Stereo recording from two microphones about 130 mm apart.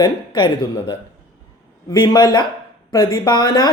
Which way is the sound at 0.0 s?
35° left (ahead or behind).